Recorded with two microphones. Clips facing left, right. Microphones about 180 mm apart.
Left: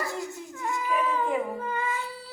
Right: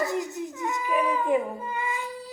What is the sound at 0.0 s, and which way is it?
Dog, 20° right (ahead or behind).